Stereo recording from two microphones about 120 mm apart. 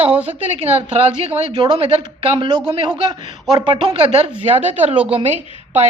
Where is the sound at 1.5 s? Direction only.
40° right (ahead or behind).